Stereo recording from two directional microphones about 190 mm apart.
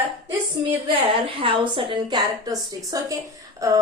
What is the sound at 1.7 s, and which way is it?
Speech, 25° right (ahead or behind).